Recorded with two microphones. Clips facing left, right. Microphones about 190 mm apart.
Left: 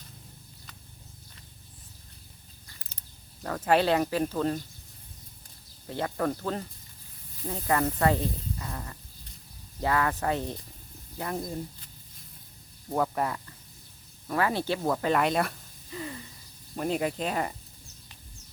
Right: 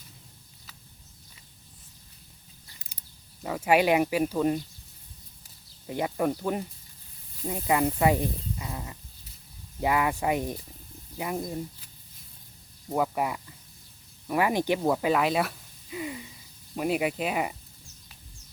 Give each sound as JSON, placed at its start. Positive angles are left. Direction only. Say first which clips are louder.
{"t": 2.6, "sound": "a sound", "louder": "left 3 dB", "side_deg": -15}
{"t": 3.4, "sound": "speech", "louder": "right 1 dB", "side_deg": -10}
{"t": 5.9, "sound": "speech", "louder": "right 2 dB", "side_deg": -15}
{"t": 12.9, "sound": "speech", "louder": "right 1 dB", "side_deg": -10}